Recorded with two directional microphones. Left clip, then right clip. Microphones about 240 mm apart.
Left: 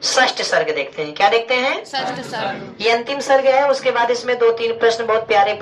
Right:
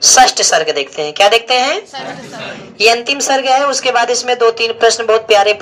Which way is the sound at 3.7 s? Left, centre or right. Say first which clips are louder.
Right 3 dB; right.